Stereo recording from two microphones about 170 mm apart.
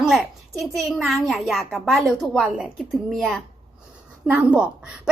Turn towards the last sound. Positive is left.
turn(degrees=-5)  # may be behind; listen again after turning